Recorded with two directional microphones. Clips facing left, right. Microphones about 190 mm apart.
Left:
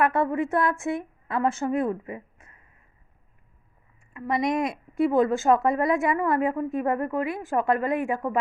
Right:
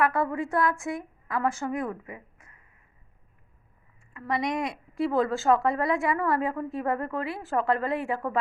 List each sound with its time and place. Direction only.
0.0 s a woman's voice: 25° left (ahead or behind)
4.1 s a woman's voice: 20° left (ahead or behind)